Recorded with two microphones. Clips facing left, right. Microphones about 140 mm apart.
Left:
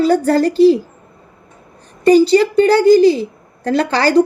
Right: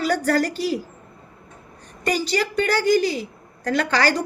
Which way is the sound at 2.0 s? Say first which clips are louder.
Left 13 dB; 30° left (ahead or behind).